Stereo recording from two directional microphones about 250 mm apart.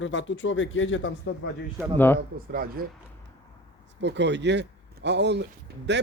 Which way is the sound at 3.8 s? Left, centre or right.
Right.